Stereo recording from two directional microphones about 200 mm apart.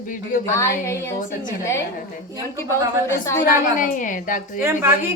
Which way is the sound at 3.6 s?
40° left (ahead or behind).